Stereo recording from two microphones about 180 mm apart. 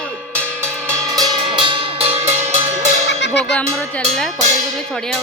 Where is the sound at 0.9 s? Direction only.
20° right (ahead or behind).